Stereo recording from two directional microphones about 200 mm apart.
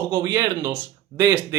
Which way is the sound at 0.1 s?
20° right (ahead or behind).